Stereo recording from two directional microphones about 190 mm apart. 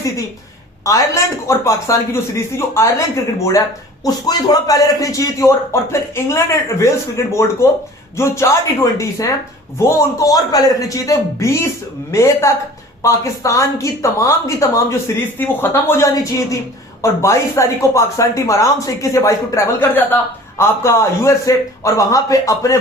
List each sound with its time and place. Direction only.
0.9 s speech: 15° left (ahead or behind)
8.1 s speech: 15° left (ahead or behind)